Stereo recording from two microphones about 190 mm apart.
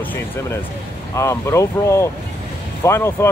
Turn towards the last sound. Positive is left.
turn(degrees=15)  # may be behind; listen again after turning